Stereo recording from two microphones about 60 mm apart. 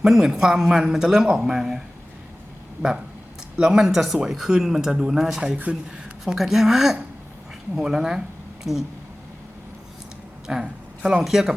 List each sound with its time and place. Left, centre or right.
0.0 s speech: centre
3.6 s speech: centre
10.4 s a sound: centre
11.2 s speech: centre